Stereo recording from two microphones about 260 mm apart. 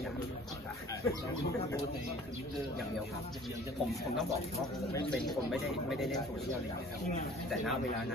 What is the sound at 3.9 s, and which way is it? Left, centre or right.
Speech, centre.